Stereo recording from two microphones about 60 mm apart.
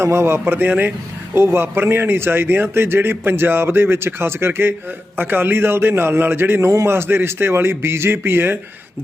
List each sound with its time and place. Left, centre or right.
0.0 s speech: right
1.4 s speech: right